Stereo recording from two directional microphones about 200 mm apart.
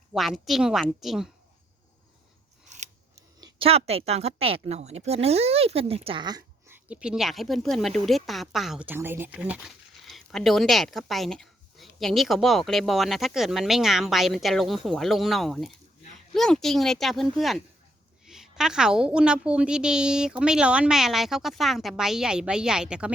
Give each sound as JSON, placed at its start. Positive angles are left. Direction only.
{"t": 0.1, "sound": "a woman's voice", "side_deg": 0}
{"t": 2.6, "sound": "scissors", "side_deg": -35}
{"t": 3.4, "sound": "a woman's voice", "side_deg": -30}